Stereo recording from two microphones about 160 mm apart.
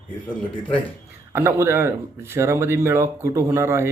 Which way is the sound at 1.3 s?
15° right (ahead or behind).